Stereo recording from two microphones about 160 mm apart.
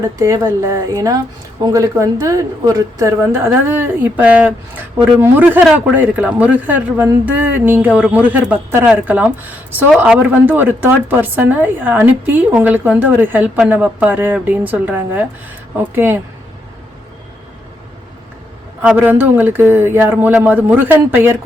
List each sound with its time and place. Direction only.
0.2 s speech: 20° right (ahead or behind)
18.8 s speech: 10° right (ahead or behind)